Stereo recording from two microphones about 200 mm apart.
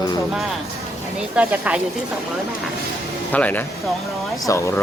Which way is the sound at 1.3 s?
5° right (ahead or behind).